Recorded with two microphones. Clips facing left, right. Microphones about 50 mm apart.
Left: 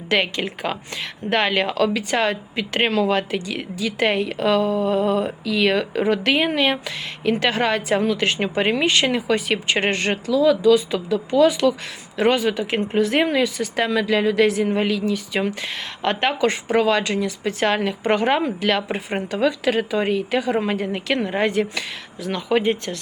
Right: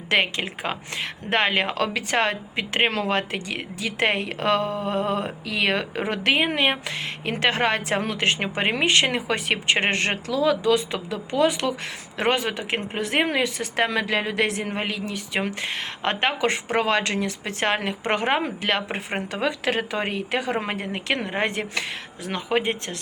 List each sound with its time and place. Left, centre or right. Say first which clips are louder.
0.1 s speech: left 1 dB; right
2.3 s speech: left 2 dB; right
2.9 s speech: left 5 dB; right
6.0 s speech: left 3 dB; right
8.1 s speech: left 3 dB; right
9.0 s speech: left 4 dB; right
10.2 s speech: left 6 dB; right
18.0 s speech: left 4 dB; right
19.6 s speech: left 5 dB; right